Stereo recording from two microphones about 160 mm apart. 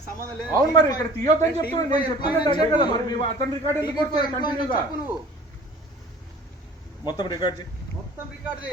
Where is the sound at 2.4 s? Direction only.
25° left (ahead or behind).